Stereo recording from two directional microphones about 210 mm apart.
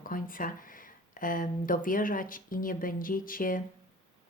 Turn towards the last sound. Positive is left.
turn(degrees=40)  # may be behind; listen again after turning